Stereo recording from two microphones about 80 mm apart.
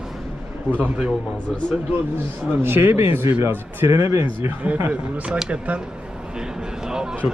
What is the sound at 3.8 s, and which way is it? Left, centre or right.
Speech, right.